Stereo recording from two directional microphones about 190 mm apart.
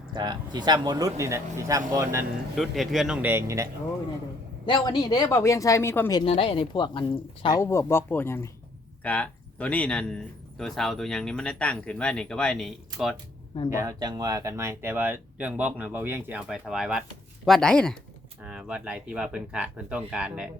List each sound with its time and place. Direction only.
0.1 s speech: 20° right (ahead or behind)
2.6 s speech: centre (ahead or behind); by 3.7 s 15° right (ahead or behind)
4.6 s speech: 25° left (ahead or behind)
6.2 s speech: 30° left (ahead or behind)
7.6 s speech: 15° left (ahead or behind)
13.7 s speech: 15° right (ahead or behind)